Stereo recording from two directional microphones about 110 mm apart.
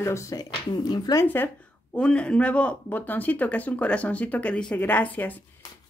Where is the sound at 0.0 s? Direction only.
25° left (ahead or behind).